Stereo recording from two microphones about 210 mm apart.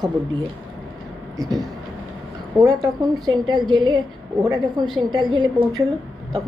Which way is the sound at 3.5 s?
20° right (ahead or behind).